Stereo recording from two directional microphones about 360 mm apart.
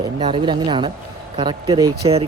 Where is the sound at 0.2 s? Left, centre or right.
Centre.